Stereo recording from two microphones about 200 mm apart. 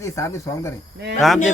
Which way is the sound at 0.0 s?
15° left (ahead or behind).